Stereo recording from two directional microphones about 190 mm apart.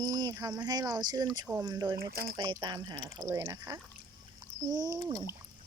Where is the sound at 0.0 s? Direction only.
20° right (ahead or behind).